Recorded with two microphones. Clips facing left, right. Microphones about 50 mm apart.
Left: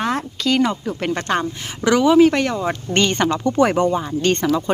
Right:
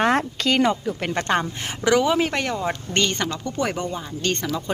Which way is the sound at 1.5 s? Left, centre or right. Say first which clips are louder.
Right 1 dB; right.